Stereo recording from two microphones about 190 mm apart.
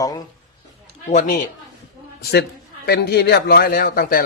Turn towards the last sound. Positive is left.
turn(degrees=50)  # may be behind; listen again after turning